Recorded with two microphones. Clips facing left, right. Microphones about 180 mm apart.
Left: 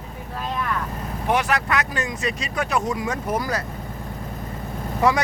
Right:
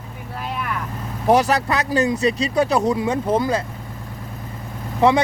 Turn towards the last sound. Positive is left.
turn(degrees=-25)  # may be behind; listen again after turning